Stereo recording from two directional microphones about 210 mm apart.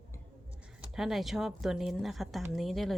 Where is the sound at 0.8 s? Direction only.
Centre (ahead or behind).